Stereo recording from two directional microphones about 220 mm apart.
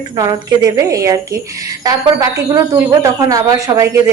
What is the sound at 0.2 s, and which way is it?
A woman's voice, 15° right (ahead or behind).